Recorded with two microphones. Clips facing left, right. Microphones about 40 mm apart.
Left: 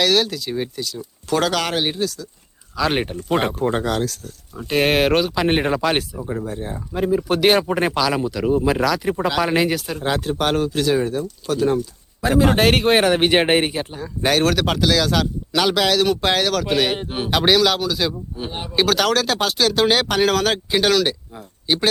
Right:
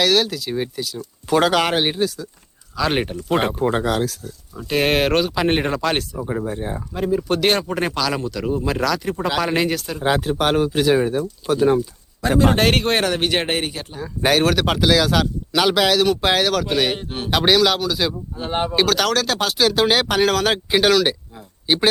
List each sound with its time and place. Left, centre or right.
0.0 s speech: centre
2.7 s speech: centre
4.5 s speech: centre
6.1 s speech: centre
6.9 s speech: centre
10.0 s speech: centre
12.2 s speech: centre; by 13.8 s left
14.0 s speech: centre
17.0 s speech: centre
17.3 s speech: centre